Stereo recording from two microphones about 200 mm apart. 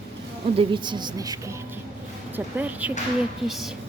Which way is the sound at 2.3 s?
10° right (ahead or behind).